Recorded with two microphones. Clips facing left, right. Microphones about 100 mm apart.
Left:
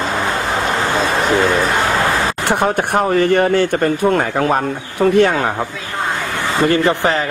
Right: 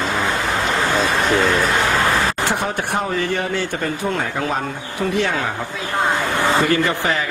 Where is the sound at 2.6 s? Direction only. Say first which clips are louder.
Left 6 dB; 55° left (ahead or behind).